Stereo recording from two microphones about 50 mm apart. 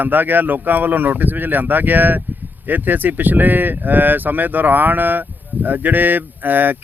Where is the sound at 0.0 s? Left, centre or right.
Right.